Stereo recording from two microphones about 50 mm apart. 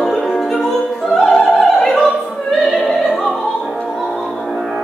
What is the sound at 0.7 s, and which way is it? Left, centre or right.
Opera, centre.